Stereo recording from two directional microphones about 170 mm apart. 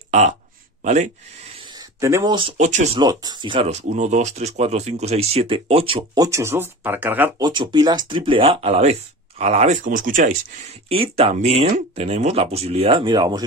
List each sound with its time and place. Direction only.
0.1 s speech: 40° right (ahead or behind)
1.8 s a sound: 15° right (ahead or behind)
2.3 s speech: 35° right (ahead or behind)
3.0 s speech: 25° right (ahead or behind)
6.1 s speech: 20° right (ahead or behind)
7.4 s speech: 25° right (ahead or behind); by 10.3 s 55° right (ahead or behind)
11.1 s speech: 35° right (ahead or behind)